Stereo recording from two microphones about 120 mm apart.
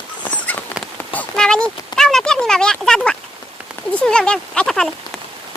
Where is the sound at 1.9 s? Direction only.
5° left (ahead or behind).